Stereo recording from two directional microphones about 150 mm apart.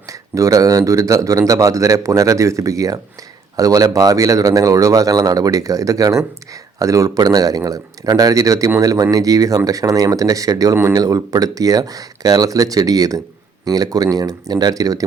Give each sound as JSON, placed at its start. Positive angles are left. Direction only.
{"t": 0.1, "sound": "speech", "side_deg": -20}